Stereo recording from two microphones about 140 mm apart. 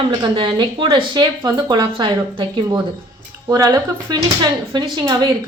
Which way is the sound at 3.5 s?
25° right (ahead or behind).